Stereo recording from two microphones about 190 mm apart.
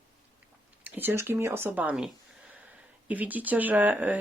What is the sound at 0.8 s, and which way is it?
Speech, 10° right (ahead or behind).